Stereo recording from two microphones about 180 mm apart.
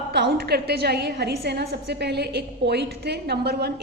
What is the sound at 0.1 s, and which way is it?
A woman's voice, 65° right (ahead or behind).